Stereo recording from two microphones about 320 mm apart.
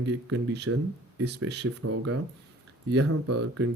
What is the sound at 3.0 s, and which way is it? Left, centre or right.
Speech, right.